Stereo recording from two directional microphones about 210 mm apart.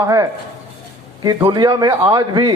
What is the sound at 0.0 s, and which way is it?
A man's voice, 15° right (ahead or behind).